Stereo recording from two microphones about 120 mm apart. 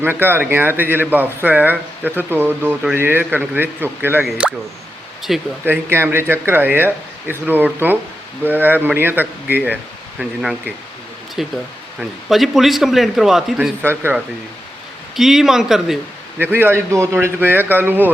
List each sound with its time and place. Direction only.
0.0 s a man's voice: 15° right (ahead or behind)
5.6 s speech: 20° right (ahead or behind)
10.2 s a man's voice: 5° right (ahead or behind)
13.8 s speech: 20° right (ahead or behind)
15.1 s a man's voice: 5° right (ahead or behind)
16.4 s speech: 15° right (ahead or behind)